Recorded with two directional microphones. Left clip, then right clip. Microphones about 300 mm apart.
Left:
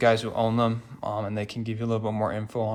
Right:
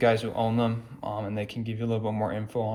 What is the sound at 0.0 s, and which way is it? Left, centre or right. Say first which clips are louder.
Speech: left 2 dB; centre.